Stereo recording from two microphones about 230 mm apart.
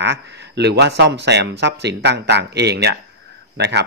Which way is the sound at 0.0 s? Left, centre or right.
Right.